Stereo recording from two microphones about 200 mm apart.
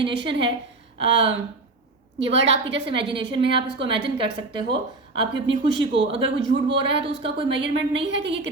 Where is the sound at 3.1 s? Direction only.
25° right (ahead or behind).